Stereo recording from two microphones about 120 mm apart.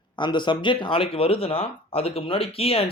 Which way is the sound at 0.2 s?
40° left (ahead or behind).